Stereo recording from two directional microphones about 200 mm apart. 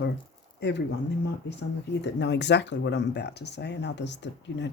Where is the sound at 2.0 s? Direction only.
60° left (ahead or behind).